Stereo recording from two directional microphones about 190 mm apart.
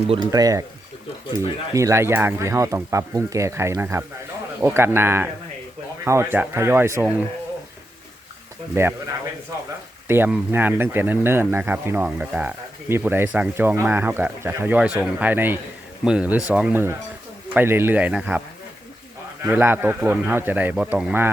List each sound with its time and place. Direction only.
0.1 s speech: 20° right (ahead or behind)
1.7 s speech: 15° right (ahead or behind)
8.7 s speech: 15° right (ahead or behind)
10.1 s speech: 10° right (ahead or behind)